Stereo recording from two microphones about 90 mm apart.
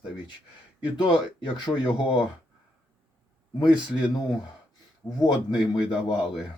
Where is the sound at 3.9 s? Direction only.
60° left (ahead or behind).